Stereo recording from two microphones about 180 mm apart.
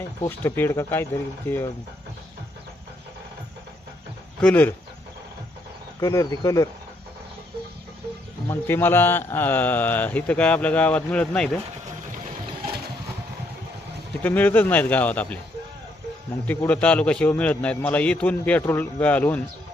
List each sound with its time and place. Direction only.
0.2 s speech: 10° left (ahead or behind)
4.4 s speech: 10° left (ahead or behind)
6.0 s speech: 20° left (ahead or behind)
8.4 s speech: 10° left (ahead or behind)
14.2 s speech: 10° left (ahead or behind)
16.5 s speech: 5° left (ahead or behind)